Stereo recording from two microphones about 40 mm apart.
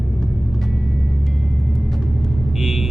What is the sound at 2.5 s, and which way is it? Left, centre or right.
Vehicle, centre.